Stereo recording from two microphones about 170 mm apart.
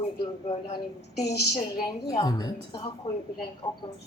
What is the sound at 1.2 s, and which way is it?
Speech, 70° left (ahead or behind).